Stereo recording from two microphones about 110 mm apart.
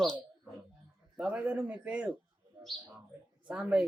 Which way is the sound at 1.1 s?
15° right (ahead or behind).